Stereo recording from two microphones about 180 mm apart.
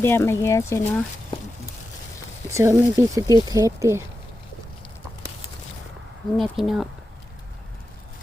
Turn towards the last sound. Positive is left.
turn(degrees=0)  # may be behind; listen again after turning